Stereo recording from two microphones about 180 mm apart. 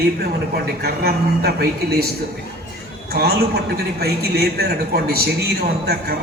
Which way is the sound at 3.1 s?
60° right (ahead or behind).